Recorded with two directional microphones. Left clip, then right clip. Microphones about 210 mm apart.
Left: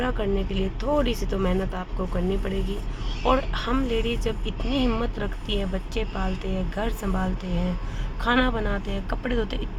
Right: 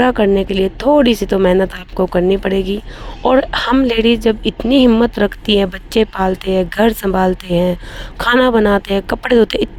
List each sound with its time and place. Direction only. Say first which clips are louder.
0.0 s speech: right 14 dB; 45° right (ahead or behind)